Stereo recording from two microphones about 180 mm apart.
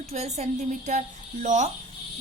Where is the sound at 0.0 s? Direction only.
35° right (ahead or behind).